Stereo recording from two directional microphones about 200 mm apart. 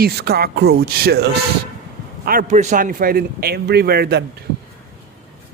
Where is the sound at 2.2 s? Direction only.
40° right (ahead or behind).